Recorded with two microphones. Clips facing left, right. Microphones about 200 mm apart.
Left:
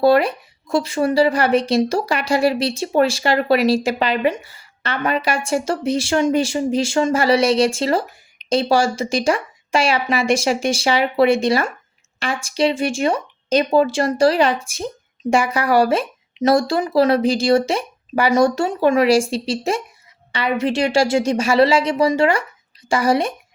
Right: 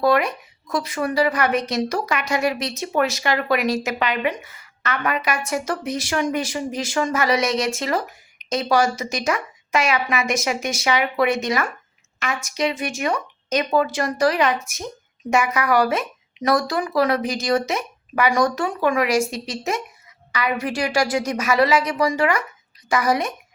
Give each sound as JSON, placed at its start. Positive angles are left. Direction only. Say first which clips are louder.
{"t": 0.0, "sound": "a woman's voice", "louder": "left 4 dB", "side_deg": 30}